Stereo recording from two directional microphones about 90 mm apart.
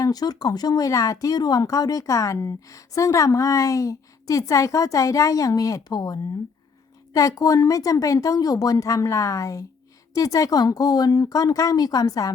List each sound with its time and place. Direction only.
0.0 s speech: 45° left (ahead or behind)